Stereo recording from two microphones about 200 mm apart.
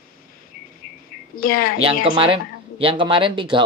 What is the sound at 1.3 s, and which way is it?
Speech, 45° left (ahead or behind).